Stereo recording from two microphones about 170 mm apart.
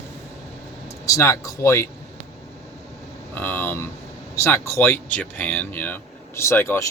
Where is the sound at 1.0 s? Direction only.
20° left (ahead or behind).